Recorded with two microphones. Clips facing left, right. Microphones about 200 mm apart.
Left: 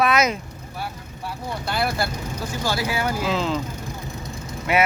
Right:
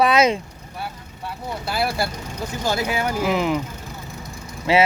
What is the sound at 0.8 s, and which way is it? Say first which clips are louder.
Vehicle: even; centre (ahead or behind).